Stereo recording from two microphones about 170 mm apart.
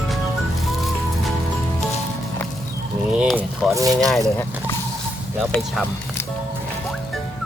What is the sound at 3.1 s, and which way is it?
Speech, 5° right (ahead or behind).